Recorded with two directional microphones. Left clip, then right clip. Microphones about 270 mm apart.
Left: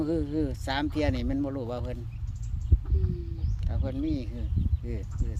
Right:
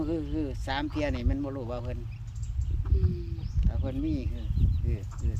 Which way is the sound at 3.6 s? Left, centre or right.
Left.